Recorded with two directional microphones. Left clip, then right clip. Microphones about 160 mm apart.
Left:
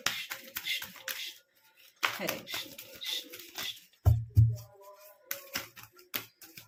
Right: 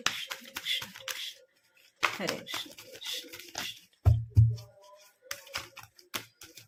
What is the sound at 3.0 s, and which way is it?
Pigeon, 45° right (ahead or behind).